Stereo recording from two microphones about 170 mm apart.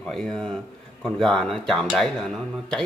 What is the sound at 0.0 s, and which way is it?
Speech, 5° left (ahead or behind).